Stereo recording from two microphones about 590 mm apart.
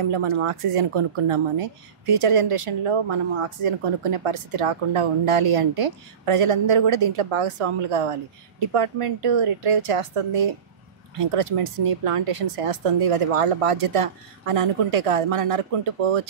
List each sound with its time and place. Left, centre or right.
0.0 s speech: right